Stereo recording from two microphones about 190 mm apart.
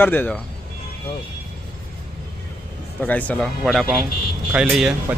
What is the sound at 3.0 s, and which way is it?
A man's voice, 10° left (ahead or behind).